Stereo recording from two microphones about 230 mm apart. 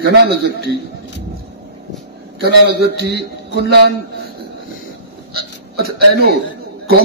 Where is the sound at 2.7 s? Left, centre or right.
Right.